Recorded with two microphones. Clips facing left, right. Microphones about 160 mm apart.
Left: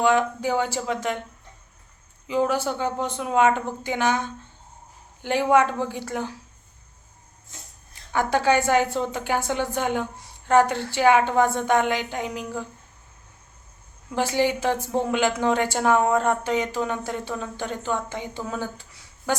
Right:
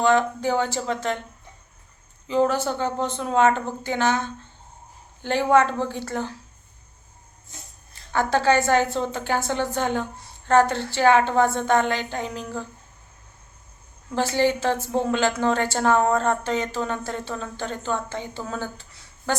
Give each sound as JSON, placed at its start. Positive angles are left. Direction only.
{"t": 0.0, "sound": "a woman's voice", "side_deg": 10}
{"t": 2.2, "sound": "a woman's voice", "side_deg": 10}
{"t": 8.1, "sound": "a woman's voice", "side_deg": 10}
{"t": 14.1, "sound": "a woman's voice", "side_deg": 15}